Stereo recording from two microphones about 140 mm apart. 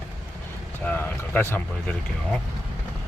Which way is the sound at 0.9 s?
10° left (ahead or behind).